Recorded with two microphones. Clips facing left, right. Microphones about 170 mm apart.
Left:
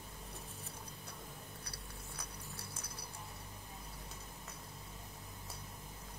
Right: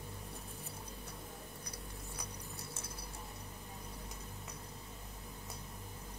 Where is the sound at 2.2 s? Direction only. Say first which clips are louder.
Right 2 dB; 20° right (ahead or behind).